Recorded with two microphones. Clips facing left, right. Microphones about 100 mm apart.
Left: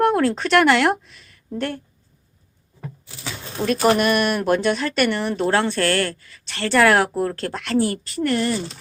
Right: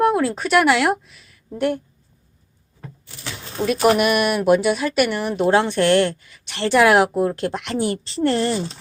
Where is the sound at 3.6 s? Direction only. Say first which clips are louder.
Right 1 dB; 10° right (ahead or behind); by 8.5 s 25° right (ahead or behind).